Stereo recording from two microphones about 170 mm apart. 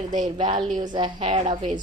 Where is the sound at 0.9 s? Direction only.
30° right (ahead or behind).